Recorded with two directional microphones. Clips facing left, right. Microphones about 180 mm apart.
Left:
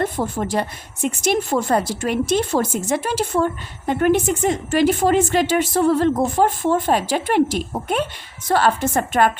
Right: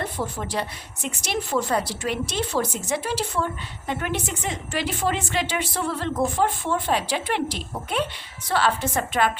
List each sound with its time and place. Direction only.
0.0 s a woman's voice: 45° left (ahead or behind)